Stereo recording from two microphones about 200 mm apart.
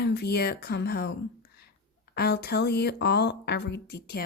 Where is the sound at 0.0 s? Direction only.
55° left (ahead or behind).